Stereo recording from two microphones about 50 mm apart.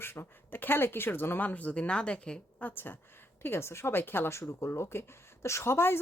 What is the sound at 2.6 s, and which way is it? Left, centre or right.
A woman's voice, left.